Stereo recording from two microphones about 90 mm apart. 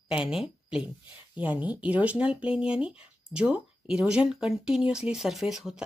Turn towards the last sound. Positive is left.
turn(degrees=-5)  # may be behind; listen again after turning